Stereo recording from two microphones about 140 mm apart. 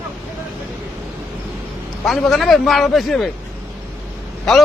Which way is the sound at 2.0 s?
Centre (ahead or behind).